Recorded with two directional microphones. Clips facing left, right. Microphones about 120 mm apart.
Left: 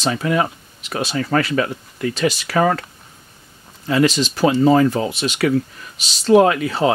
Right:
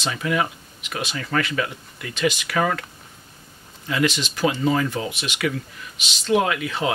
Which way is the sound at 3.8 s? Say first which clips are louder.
Left 6 dB; 35° left (ahead or behind).